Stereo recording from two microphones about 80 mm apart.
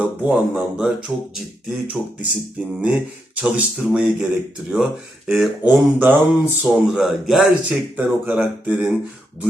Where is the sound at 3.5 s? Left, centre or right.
Centre.